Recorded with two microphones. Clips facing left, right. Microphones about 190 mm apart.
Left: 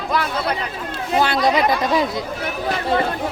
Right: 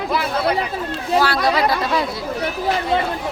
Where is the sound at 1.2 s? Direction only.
20° left (ahead or behind).